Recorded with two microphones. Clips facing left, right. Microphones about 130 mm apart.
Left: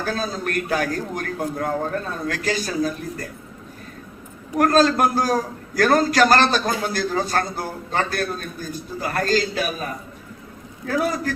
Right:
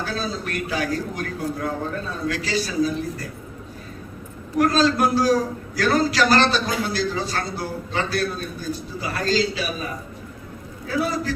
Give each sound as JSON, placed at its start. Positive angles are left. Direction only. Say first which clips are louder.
{"t": 0.0, "sound": "a man's voice", "louder": "left 2 dB", "side_deg": 45}
{"t": 4.5, "sound": "a man's voice", "louder": "left 2 dB", "side_deg": 50}
{"t": 10.8, "sound": "a man's voice", "louder": "left 1 dB", "side_deg": 50}